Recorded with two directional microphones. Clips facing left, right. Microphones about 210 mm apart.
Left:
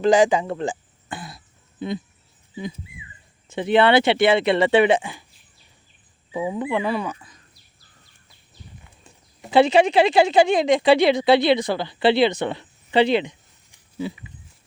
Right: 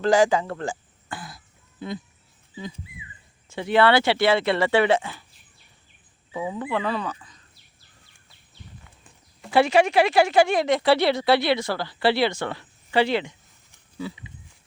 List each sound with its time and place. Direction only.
0.0 s speech: 15° left (ahead or behind)
3.5 s a woman's voice: 20° left (ahead or behind)
6.3 s speech: 15° left (ahead or behind)
9.4 s a woman's voice: 20° left (ahead or behind)